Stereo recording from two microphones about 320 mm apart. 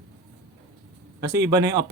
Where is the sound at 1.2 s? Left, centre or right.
Centre.